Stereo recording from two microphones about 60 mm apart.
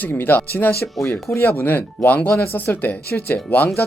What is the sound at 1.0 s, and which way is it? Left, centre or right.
Speech, left.